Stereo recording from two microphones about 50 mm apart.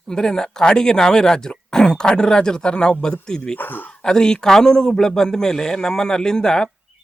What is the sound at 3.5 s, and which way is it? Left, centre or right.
Speech, left.